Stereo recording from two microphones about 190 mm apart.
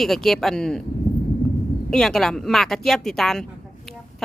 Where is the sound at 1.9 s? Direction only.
Centre (ahead or behind).